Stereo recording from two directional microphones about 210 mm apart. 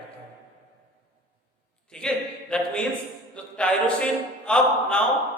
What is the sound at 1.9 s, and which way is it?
A man's voice, 5° left (ahead or behind).